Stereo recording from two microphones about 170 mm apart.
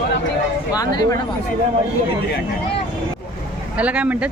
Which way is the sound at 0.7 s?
20° left (ahead or behind).